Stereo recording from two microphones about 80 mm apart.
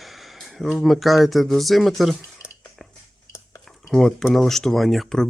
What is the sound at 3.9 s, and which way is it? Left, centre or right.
Speech, centre.